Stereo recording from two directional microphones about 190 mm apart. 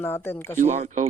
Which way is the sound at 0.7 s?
40° right (ahead or behind).